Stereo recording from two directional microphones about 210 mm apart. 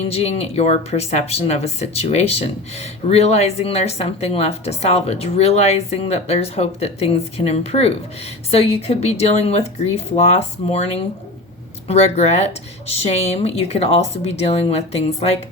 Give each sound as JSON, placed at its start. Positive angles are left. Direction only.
{"t": 0.1, "sound": "a woman's voice", "side_deg": 30}